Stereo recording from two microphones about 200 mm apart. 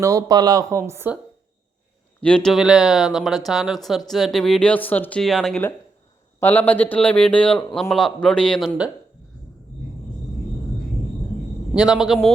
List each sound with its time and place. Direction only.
0.0 s speech: 15° right (ahead or behind)
2.2 s a man's voice: 5° left (ahead or behind)
11.7 s a man's voice: 5° right (ahead or behind)